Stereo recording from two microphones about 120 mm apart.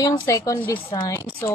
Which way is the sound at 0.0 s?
30° left (ahead or behind).